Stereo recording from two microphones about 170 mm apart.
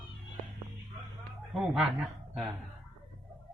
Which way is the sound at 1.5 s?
Centre (ahead or behind).